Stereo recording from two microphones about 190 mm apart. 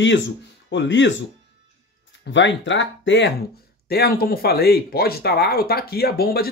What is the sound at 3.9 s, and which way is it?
Speech, 55° left (ahead or behind).